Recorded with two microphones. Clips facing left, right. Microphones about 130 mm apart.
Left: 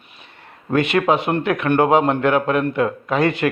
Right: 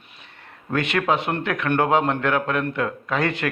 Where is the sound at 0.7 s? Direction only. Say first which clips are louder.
Left 5 dB; 10° left (ahead or behind).